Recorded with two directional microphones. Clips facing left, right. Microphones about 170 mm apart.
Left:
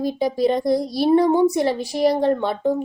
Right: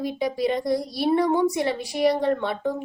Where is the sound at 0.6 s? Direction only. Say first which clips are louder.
Left 5 dB; 25° left (ahead or behind).